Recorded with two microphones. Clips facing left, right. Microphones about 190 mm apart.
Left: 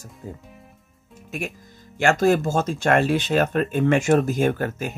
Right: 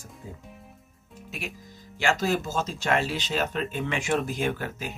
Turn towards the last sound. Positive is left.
turn(degrees=50)  # may be behind; listen again after turning